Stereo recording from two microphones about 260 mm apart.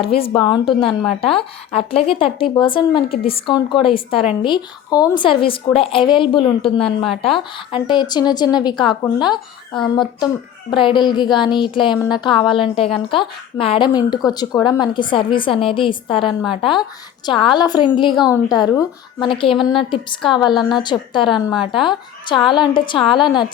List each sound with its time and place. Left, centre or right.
0.0 s a woman's voice: left
21.2 s a woman's voice: centre
21.6 s a woman's voice: centre